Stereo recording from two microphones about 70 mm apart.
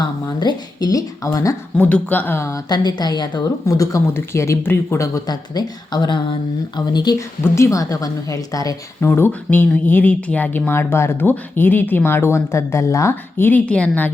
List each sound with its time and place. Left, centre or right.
0.3 s speech: left
1.8 s speech: left
2.6 s speech: left
3.7 s speech: left
4.1 s speech: left
5.3 s speech: left
7.4 s speech: left
9.0 s speech: left
13.7 s speech: centre